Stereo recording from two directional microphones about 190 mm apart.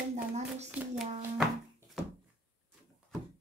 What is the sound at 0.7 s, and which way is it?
Hands, 5° right (ahead or behind).